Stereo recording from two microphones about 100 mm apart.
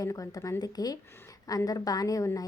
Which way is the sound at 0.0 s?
35° left (ahead or behind).